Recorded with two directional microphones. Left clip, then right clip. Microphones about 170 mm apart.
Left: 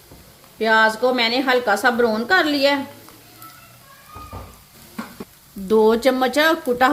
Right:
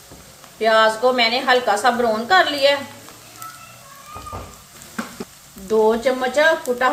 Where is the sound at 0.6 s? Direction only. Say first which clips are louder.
Right 1 dB; 65° left (ahead or behind).